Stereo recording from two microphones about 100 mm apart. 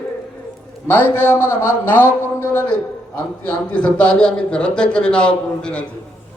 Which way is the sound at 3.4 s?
10° left (ahead or behind).